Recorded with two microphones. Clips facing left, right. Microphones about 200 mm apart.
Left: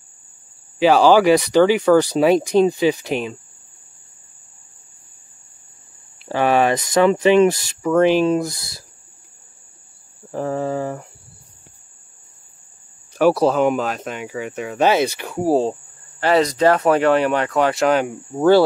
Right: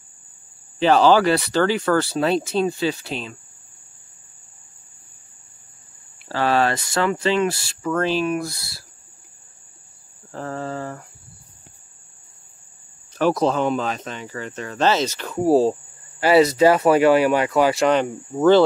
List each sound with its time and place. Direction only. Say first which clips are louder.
0.7 s speech: left 2 dB; 10° left (ahead or behind)
6.2 s speech: left 3 dB; 15° left (ahead or behind)
10.3 s speech: left 6 dB; 15° left (ahead or behind)
13.1 s speech: left 4 dB; 10° left (ahead or behind)
15.4 s speech: right 2 dB; centre (ahead or behind)